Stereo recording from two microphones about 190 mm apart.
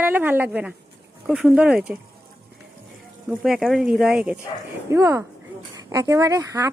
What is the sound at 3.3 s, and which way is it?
Speech, centre (ahead or behind).